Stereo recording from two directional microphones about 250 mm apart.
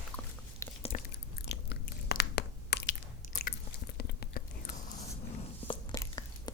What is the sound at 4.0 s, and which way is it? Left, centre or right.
Whispering, left.